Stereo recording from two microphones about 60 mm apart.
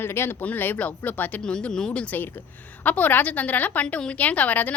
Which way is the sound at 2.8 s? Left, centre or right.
Left.